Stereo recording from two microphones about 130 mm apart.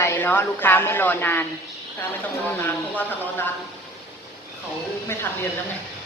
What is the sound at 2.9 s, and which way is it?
Speech, 15° left (ahead or behind).